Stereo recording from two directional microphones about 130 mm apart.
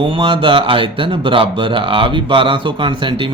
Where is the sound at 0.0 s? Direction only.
45° right (ahead or behind).